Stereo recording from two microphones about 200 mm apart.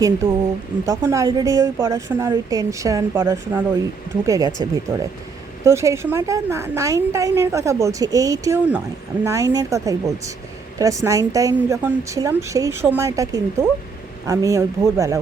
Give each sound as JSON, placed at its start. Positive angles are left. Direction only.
{"t": 0.0, "sound": "a woman's voice", "side_deg": -10}
{"t": 5.6, "sound": "a woman's voice", "side_deg": -15}